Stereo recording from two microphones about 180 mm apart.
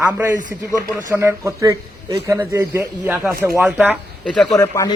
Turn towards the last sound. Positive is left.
turn(degrees=20)  # may be behind; listen again after turning